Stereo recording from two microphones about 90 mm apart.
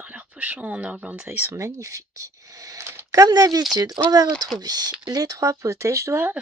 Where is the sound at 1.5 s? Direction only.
30° right (ahead or behind).